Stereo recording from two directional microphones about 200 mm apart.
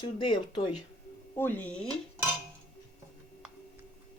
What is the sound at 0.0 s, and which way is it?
Speech, 25° left (ahead or behind).